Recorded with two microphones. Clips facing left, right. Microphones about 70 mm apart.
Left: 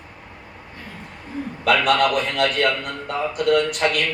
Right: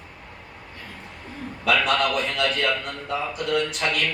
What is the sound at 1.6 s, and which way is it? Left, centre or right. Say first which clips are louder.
A man's voice: left 4 dB; left.